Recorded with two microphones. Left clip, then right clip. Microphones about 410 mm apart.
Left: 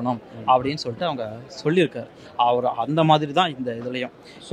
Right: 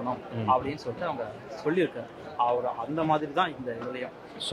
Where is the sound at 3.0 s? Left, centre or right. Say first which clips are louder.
Left 8 dB; left.